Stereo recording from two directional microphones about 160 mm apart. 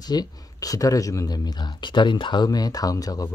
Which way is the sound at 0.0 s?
25° left (ahead or behind).